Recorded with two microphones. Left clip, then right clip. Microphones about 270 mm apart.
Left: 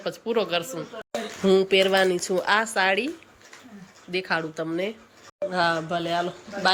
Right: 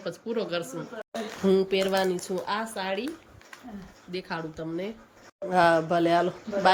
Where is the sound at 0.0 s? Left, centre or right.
Centre.